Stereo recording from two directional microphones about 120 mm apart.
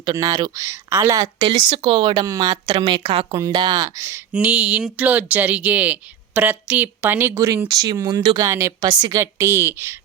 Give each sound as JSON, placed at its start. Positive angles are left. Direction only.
{"t": 0.0, "sound": "a woman's voice", "side_deg": -30}
{"t": 1.4, "sound": "speech", "side_deg": -45}
{"t": 3.3, "sound": "a woman's voice", "side_deg": -30}
{"t": 4.3, "sound": "a woman's voice", "side_deg": -10}